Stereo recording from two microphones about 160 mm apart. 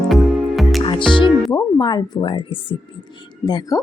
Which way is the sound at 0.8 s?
30° left (ahead or behind).